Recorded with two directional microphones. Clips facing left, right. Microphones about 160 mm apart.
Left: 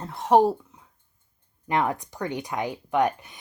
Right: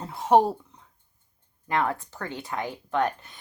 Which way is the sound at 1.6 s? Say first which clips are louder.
Left 2 dB; 15° left (ahead or behind).